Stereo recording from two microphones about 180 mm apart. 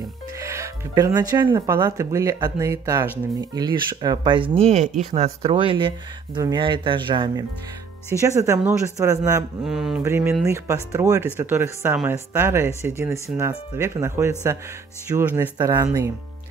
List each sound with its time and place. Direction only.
0.4 s speech: 15° right (ahead or behind)
9.7 s mantra: 5° right (ahead or behind)
10.0 s speech: 15° right (ahead or behind)